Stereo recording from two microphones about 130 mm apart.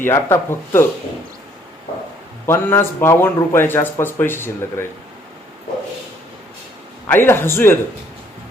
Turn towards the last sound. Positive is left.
turn(degrees=20)  # may be behind; listen again after turning